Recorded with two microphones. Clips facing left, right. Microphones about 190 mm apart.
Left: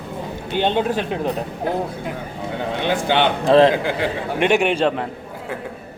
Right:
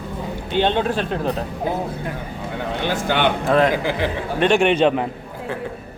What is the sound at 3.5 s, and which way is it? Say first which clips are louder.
Speech: left 5 dB; 30° left (ahead or behind).